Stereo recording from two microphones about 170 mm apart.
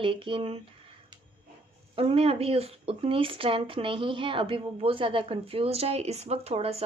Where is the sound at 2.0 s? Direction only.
35° right (ahead or behind).